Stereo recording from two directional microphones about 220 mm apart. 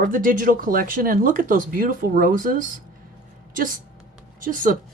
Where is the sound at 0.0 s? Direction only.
40° right (ahead or behind).